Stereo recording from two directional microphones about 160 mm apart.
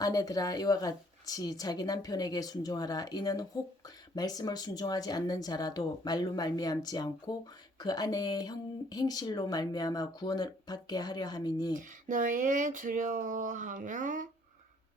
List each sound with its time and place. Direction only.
0.0 s speech: 20° left (ahead or behind)
11.7 s speech: 55° right (ahead or behind)